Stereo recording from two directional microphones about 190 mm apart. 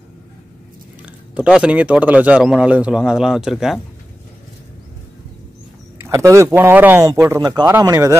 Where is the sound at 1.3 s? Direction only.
5° right (ahead or behind).